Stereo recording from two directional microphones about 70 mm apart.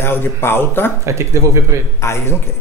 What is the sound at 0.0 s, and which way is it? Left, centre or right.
Speech, left.